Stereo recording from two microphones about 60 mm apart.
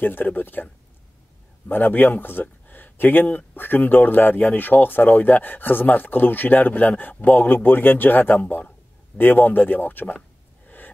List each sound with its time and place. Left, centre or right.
0.0 s speech: left
1.7 s speech: left